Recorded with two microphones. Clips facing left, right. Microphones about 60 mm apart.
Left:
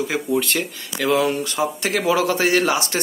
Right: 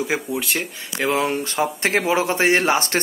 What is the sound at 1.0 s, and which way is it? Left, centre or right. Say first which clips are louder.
A man's voice: left 2 dB; right.